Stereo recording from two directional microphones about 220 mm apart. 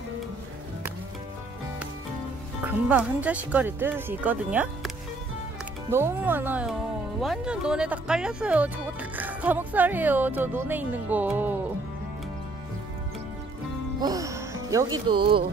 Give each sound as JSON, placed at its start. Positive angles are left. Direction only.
{"t": 2.6, "sound": "speech", "side_deg": -5}
{"t": 14.0, "sound": "speech", "side_deg": -15}